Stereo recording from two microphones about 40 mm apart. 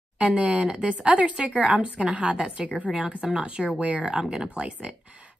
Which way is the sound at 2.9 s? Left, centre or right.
Centre.